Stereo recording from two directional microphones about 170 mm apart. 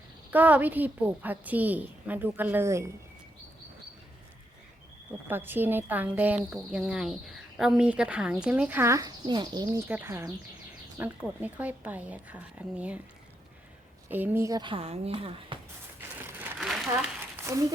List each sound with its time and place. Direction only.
0.3 s a woman's voice: 10° right (ahead or behind)
5.3 s a woman's voice: 10° right (ahead or behind)
14.1 s speech: 10° right (ahead or behind); by 15.5 s 30° right (ahead or behind)
16.2 s a sound: 10° right (ahead or behind)